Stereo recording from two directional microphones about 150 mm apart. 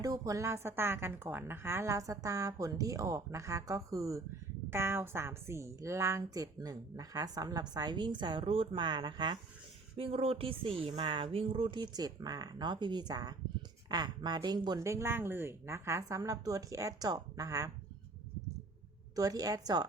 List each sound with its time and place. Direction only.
0.0 s a woman's voice: 20° right (ahead or behind)
19.1 s a woman's voice: 25° right (ahead or behind)